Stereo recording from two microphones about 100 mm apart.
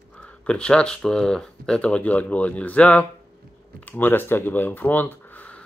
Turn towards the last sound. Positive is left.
turn(degrees=15)  # may be behind; listen again after turning